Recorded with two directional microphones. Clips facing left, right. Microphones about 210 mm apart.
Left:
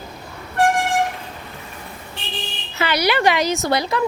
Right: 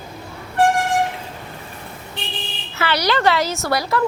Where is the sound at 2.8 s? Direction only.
15° left (ahead or behind).